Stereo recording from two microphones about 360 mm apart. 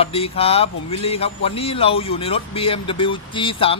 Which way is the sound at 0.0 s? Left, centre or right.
Centre.